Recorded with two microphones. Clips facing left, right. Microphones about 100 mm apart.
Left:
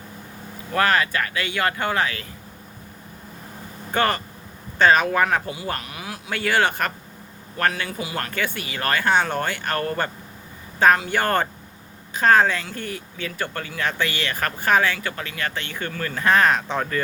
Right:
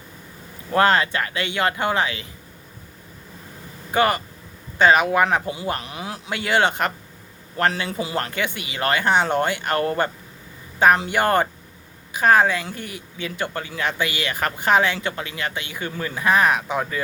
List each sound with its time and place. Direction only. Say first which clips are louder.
0.7 s speech: right 3 dB; 25° right (ahead or behind)
3.9 s speech: right 2 dB; 15° right (ahead or behind)